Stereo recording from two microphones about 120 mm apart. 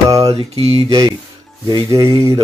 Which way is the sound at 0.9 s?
35° right (ahead or behind).